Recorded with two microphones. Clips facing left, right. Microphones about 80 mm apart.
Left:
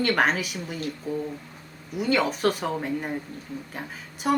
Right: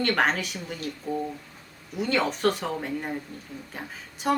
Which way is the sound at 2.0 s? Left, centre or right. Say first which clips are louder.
Left 2 dB; centre.